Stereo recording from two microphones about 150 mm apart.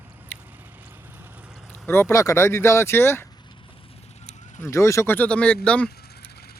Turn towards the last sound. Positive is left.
turn(degrees=5)  # may be behind; listen again after turning